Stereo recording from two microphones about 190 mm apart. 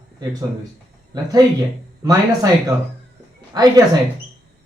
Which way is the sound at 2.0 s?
20° right (ahead or behind).